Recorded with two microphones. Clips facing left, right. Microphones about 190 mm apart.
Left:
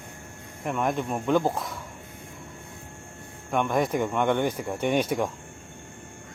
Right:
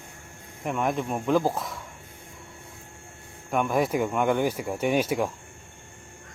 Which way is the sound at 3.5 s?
5° right (ahead or behind).